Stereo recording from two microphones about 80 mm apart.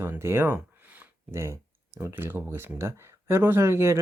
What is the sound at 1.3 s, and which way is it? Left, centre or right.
Speech, right.